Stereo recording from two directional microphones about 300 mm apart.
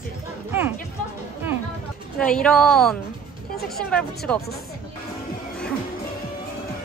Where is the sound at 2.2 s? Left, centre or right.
Centre.